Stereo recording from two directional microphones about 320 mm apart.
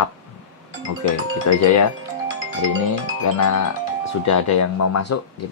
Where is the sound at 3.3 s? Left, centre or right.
Left.